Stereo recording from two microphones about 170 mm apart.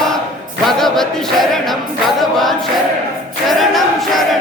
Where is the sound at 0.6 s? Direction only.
Centre (ahead or behind).